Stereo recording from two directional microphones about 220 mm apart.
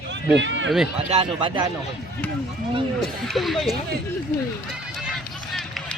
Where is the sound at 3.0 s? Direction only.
Centre (ahead or behind).